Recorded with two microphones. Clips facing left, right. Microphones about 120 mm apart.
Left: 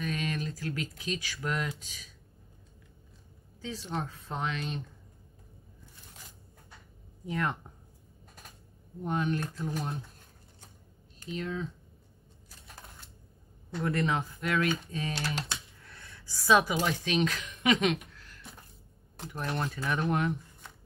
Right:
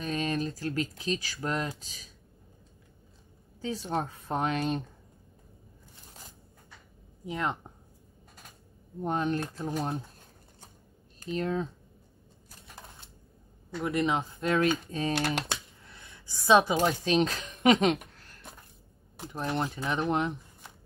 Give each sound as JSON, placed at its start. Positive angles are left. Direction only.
{"t": 0.0, "sound": "speech", "side_deg": -35}
{"t": 3.6, "sound": "speech", "side_deg": -45}
{"t": 7.2, "sound": "speech", "side_deg": -20}
{"t": 9.0, "sound": "speech", "side_deg": -35}
{"t": 11.1, "sound": "speech", "side_deg": -45}
{"t": 13.8, "sound": "speech", "side_deg": -15}
{"t": 15.1, "sound": "speech", "side_deg": -60}
{"t": 15.8, "sound": "a sound", "side_deg": -15}
{"t": 16.8, "sound": "speech", "side_deg": -35}
{"t": 19.3, "sound": "speech", "side_deg": -25}